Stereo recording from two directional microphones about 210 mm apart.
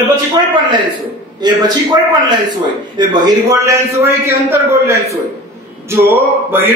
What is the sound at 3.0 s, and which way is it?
A man's voice, 20° right (ahead or behind).